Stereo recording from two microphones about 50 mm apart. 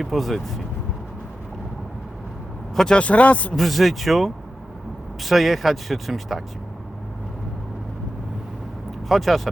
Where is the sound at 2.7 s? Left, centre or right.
Centre.